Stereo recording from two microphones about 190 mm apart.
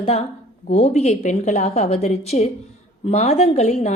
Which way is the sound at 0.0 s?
30° left (ahead or behind).